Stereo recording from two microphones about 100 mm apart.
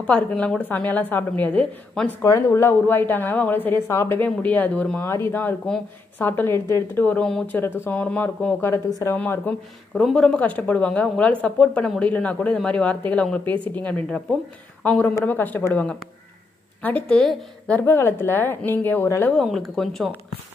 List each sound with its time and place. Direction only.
0.0 s speech: 15° left (ahead or behind)
2.2 s speech: 30° left (ahead or behind)
3.9 s speech: 30° left (ahead or behind)
4.2 s speech: 15° left (ahead or behind)
5.0 s speech: 25° left (ahead or behind)
7.2 s speech: 10° left (ahead or behind)
7.5 s speech: 20° left (ahead or behind)
8.6 s speech: 25° left (ahead or behind)
10.0 s speech: 5° left (ahead or behind)
17.7 s speech: 25° left (ahead or behind)
19.4 s speech: centre (ahead or behind)